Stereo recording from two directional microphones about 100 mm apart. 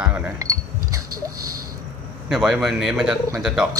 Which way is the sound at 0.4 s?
35° right (ahead or behind).